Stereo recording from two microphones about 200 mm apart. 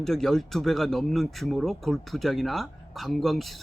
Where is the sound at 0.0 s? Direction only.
Centre (ahead or behind).